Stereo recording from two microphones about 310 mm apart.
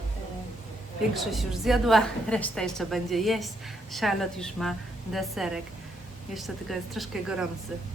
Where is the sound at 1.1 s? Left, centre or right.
Centre.